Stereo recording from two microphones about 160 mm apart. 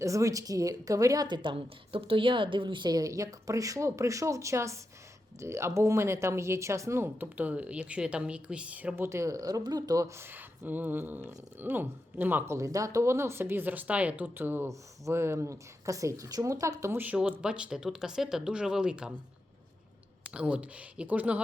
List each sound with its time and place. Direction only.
0.0 s a woman's voice: 20° right (ahead or behind)
20.3 s speech: 10° right (ahead or behind)